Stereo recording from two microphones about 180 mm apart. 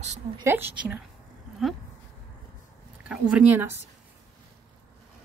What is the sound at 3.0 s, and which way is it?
Speech, 5° right (ahead or behind).